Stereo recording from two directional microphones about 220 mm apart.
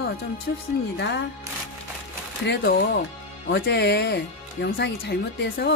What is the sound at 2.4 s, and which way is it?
Speech, 45° left (ahead or behind).